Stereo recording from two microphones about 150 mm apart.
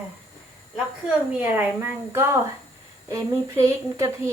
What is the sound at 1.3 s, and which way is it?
A woman's voice, 15° right (ahead or behind).